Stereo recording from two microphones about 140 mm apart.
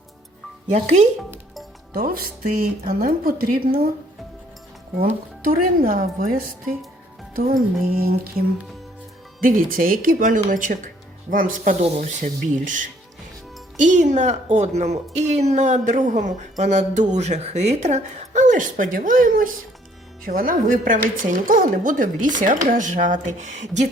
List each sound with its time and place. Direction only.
0.7 s a woman's voice: 55° right (ahead or behind)
1.9 s speech: 90° right
5.5 s a woman's voice: 90° right; by 23.8 s 60° right (ahead or behind)